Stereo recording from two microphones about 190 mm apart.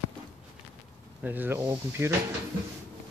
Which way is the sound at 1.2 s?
10° right (ahead or behind).